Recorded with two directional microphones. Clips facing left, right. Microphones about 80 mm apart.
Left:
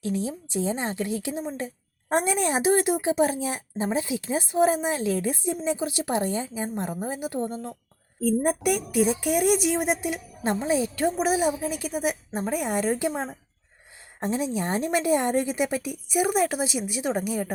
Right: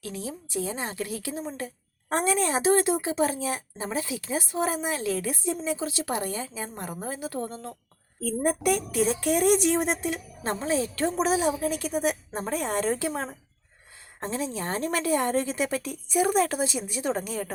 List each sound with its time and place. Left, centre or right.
0.0 s a woman's voice: left; by 13.0 s centre
13.0 s a woman's voice: centre